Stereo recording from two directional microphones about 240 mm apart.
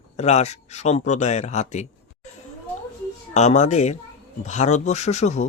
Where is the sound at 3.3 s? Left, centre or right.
Left.